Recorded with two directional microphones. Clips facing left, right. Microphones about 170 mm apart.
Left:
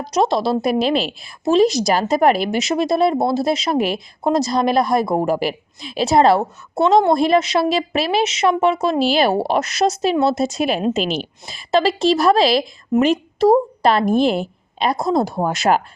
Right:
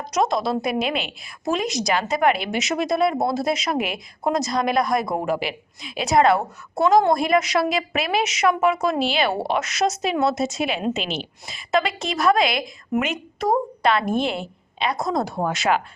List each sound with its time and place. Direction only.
0.0 s a woman's voice: 30° left (ahead or behind)